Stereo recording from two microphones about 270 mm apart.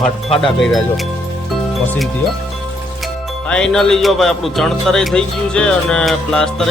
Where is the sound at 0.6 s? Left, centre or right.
Centre.